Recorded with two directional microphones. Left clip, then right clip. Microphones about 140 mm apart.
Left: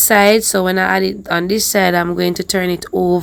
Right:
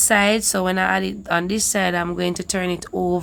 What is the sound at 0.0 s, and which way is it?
Speech, 30° left (ahead or behind).